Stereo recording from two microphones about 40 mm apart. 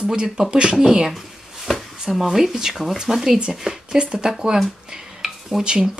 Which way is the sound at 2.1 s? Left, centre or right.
Centre.